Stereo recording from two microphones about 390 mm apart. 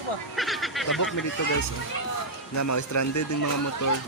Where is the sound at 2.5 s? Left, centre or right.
Left.